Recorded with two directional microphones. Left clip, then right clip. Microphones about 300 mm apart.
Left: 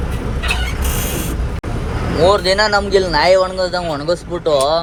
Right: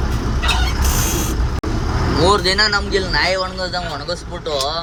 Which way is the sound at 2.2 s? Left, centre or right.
Centre.